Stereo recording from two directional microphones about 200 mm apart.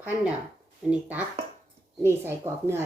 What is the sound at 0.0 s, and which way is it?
A woman's voice, 5° right (ahead or behind).